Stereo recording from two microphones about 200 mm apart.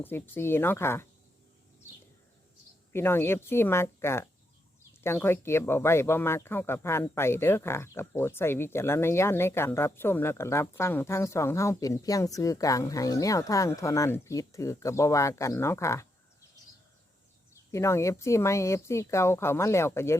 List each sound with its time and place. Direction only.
0.0 s speech: 10° left (ahead or behind)
2.9 s speech: 10° left (ahead or behind)
17.7 s speech: 15° left (ahead or behind)